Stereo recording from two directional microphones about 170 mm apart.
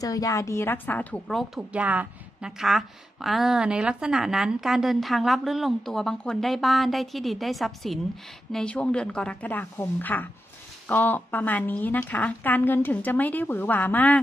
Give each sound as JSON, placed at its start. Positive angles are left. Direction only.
{"t": 0.0, "sound": "a woman's voice", "side_deg": 20}